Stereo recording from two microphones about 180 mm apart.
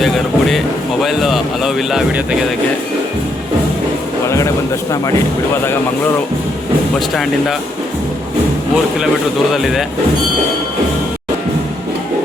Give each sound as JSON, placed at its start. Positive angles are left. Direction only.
{"t": 0.0, "sound": "speech", "side_deg": 0}
{"t": 4.3, "sound": "speech", "side_deg": 15}
{"t": 7.1, "sound": "speech", "side_deg": 0}